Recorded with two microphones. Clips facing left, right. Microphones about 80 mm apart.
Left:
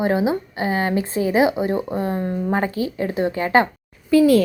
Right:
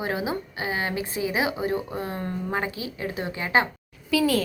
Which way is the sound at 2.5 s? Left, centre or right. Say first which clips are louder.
Left 8 dB; left.